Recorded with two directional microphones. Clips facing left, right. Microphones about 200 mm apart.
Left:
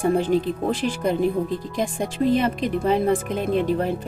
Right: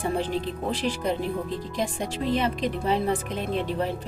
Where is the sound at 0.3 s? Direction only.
50° left (ahead or behind).